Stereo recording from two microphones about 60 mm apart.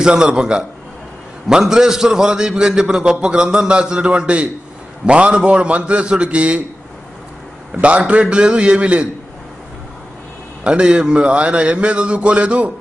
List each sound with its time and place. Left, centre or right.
0.0 s a man's voice: centre
7.7 s a man's voice: centre
10.6 s a man's voice: centre